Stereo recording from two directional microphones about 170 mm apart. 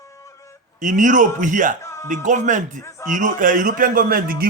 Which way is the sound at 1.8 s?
15° left (ahead or behind).